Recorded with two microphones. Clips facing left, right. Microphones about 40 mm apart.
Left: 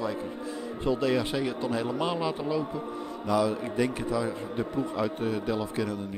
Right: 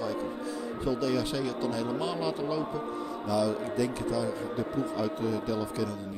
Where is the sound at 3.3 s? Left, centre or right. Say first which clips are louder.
Left 2 dB; left.